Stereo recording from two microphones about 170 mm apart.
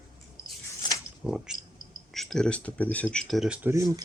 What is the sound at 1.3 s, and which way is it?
Speech, 5° right (ahead or behind).